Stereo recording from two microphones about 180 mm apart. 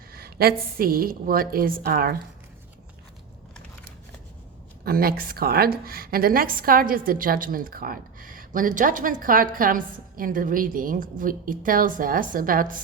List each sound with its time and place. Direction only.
0.1 s a woman's voice: 60° right (ahead or behind)
4.9 s a woman's voice: 55° right (ahead or behind)